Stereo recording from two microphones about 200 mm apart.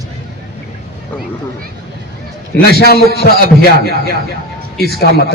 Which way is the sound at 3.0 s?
50° right (ahead or behind).